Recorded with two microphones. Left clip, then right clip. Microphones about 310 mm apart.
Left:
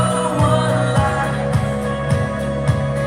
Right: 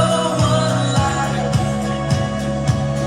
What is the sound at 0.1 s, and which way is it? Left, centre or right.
Music, left.